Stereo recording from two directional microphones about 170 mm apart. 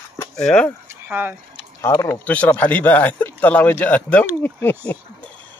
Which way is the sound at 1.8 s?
15° left (ahead or behind).